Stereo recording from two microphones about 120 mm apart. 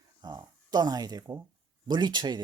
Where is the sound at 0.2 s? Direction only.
35° right (ahead or behind).